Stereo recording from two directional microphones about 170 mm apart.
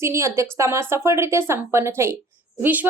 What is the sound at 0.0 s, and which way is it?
A woman's voice, 15° right (ahead or behind).